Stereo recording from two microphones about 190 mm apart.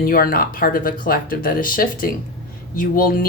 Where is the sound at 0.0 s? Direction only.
50° left (ahead or behind).